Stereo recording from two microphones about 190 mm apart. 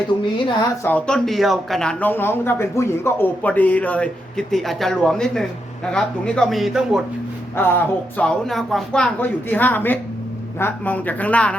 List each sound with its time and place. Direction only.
0.9 s speech: 5° left (ahead or behind)
7.5 s speech: 10° left (ahead or behind)